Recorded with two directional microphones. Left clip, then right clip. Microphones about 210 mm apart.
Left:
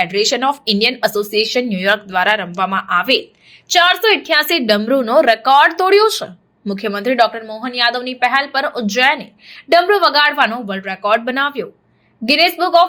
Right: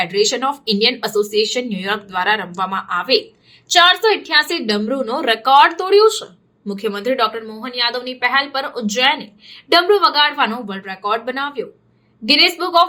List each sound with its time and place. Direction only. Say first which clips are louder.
0.0 s a woman's voice: left 2 dB; 15° left (ahead or behind)